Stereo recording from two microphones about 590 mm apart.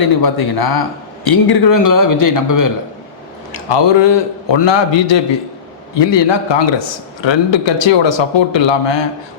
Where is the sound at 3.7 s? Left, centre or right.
Left.